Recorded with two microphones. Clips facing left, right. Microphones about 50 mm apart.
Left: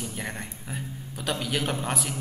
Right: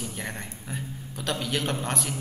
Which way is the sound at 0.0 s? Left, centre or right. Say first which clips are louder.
Left 1 dB; centre.